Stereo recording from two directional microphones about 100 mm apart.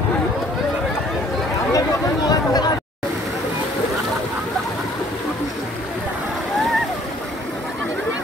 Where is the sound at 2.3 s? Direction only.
40° left (ahead or behind).